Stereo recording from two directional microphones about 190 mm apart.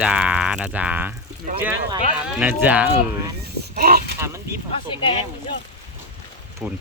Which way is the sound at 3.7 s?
55° right (ahead or behind).